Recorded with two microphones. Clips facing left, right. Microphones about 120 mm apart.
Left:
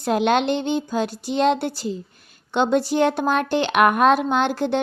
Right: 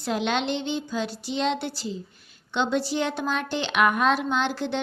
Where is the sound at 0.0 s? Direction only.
50° left (ahead or behind).